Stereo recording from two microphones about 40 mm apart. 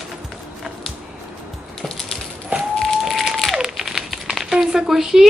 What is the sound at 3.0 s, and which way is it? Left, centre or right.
Crumpling, centre.